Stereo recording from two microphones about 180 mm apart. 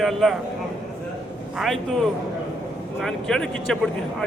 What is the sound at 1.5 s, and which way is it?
Speech, centre (ahead or behind).